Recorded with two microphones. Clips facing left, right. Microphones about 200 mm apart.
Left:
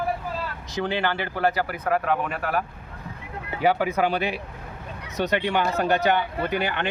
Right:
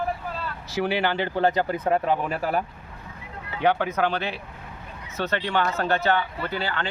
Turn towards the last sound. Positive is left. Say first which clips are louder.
# left 3 dB
turn(degrees=20)  # may be behind; listen again after turning